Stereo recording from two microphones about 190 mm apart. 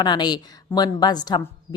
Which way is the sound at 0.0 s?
20° left (ahead or behind).